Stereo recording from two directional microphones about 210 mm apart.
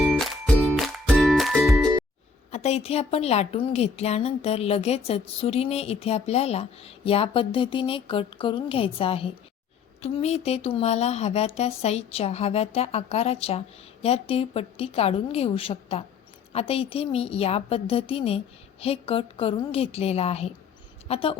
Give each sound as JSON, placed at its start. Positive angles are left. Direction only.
{"t": 0.0, "sound": "music", "side_deg": 0}
{"t": 2.5, "sound": "a woman's voice", "side_deg": 30}